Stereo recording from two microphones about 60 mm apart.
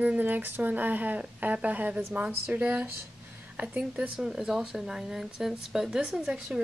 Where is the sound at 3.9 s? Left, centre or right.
Right.